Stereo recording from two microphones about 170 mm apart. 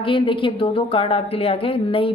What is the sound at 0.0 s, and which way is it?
Speech, 30° left (ahead or behind).